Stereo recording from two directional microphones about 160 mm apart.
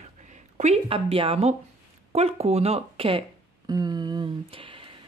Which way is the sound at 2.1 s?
40° right (ahead or behind).